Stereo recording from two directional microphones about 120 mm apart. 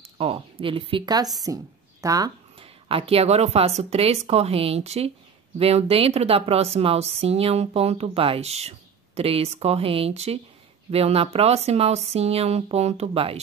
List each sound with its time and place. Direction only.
0.2 s speech: 50° right (ahead or behind)
1.4 s speech: 30° right (ahead or behind)
2.6 s speech: 50° right (ahead or behind)